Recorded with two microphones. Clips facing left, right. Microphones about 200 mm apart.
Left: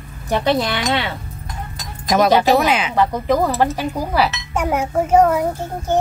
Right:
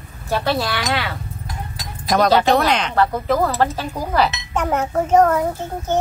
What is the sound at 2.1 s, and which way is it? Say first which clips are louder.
A child's voice: left 1 dB; 10° left (ahead or behind).